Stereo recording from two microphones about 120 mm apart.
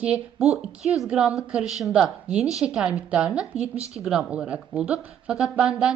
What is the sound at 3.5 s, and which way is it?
Speech, 60° right (ahead or behind).